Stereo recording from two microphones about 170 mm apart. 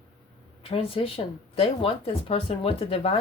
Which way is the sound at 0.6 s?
35° left (ahead or behind).